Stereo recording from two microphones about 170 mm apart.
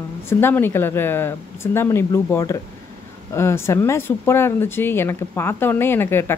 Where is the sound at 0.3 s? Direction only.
15° left (ahead or behind).